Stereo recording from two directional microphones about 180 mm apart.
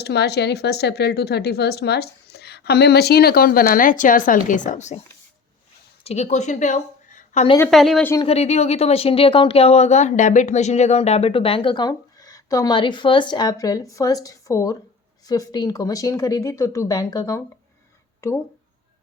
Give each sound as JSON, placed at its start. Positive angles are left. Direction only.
{"t": 0.0, "sound": "speech", "side_deg": 65}
{"t": 6.1, "sound": "a woman's voice", "side_deg": 40}
{"t": 7.7, "sound": "speech", "side_deg": 0}
{"t": 8.3, "sound": "speech", "side_deg": 35}